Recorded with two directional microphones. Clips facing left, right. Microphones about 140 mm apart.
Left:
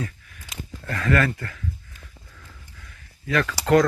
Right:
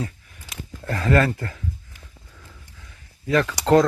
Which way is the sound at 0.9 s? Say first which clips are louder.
Right 3 dB; 30° right (ahead or behind).